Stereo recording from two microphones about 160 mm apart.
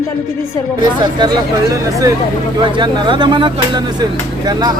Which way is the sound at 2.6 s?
30° right (ahead or behind).